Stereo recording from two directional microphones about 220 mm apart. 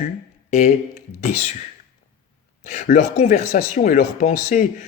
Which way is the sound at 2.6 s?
35° left (ahead or behind).